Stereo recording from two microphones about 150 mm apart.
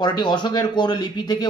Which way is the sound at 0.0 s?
30° left (ahead or behind).